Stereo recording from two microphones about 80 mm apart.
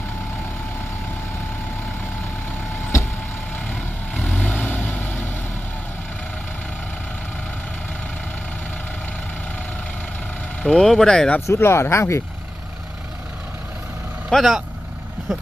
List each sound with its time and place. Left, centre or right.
3.5 s vehicle: left
10.6 s speech: centre
11.3 s speech: left
14.3 s speech: centre